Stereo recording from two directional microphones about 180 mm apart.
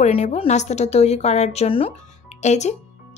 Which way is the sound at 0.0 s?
35° left (ahead or behind).